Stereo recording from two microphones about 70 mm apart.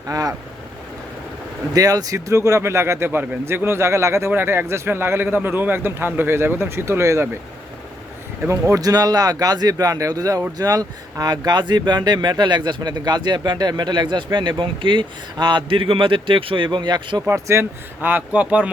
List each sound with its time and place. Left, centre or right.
0.1 s speech: right
1.7 s a man's voice: right
4.3 s a man's voice: right
8.4 s speech: right
8.8 s speech: right
16.6 s speech: right
17.2 s a man's voice: right
18.0 s speech: right